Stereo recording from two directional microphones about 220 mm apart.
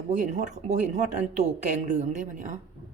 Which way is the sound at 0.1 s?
30° right (ahead or behind).